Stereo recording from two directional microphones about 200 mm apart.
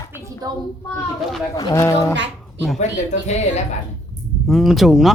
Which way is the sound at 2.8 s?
35° left (ahead or behind).